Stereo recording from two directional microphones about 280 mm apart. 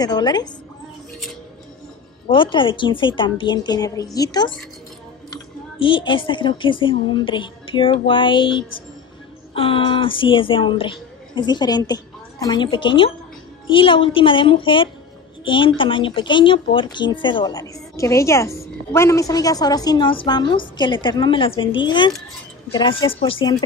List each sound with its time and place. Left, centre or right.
0.0 s speech: centre
2.2 s speech: centre
5.8 s a woman's voice: centre